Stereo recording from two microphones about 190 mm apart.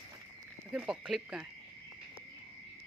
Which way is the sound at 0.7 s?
Centre (ahead or behind).